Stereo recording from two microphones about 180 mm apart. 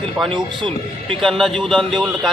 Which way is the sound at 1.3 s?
Centre (ahead or behind).